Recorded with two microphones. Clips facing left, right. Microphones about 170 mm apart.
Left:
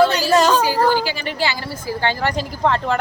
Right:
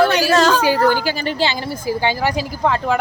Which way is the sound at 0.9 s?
45° right (ahead or behind).